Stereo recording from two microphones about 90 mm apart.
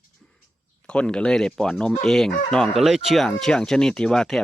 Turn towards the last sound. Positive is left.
turn(degrees=5)  # may be behind; listen again after turning